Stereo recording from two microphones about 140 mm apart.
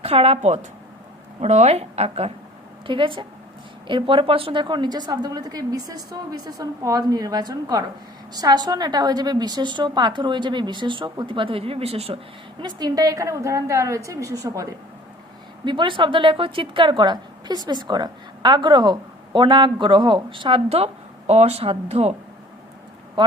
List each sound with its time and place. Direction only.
0.0 s speech: 45° right (ahead or behind)
2.8 s a woman's voice: 35° right (ahead or behind)
12.6 s a woman's voice: 25° right (ahead or behind)
15.6 s a woman's voice: 35° right (ahead or behind)